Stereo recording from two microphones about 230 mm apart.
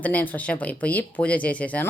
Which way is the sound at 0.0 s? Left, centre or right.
Centre.